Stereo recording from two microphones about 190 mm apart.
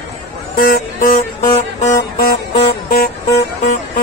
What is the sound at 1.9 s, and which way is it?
Music, 50° left (ahead or behind).